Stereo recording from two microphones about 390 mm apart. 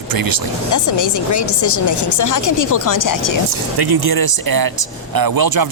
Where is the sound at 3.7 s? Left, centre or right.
Right.